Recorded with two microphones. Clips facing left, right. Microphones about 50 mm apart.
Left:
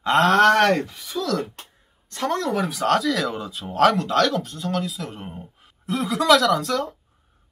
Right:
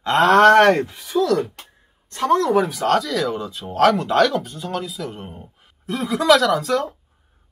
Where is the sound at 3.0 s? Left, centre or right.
Centre.